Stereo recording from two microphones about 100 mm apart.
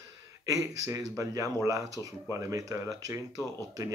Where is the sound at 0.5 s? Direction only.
35° right (ahead or behind).